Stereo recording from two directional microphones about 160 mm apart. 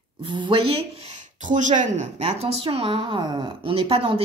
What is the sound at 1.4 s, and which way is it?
A woman's voice, 50° right (ahead or behind).